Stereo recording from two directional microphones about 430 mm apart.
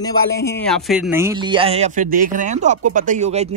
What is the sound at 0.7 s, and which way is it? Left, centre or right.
Speech, centre.